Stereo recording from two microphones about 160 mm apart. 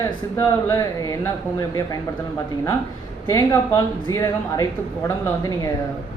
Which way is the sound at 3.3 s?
20° left (ahead or behind).